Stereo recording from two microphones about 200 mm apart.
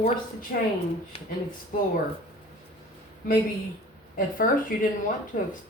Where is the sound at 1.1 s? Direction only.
30° left (ahead or behind).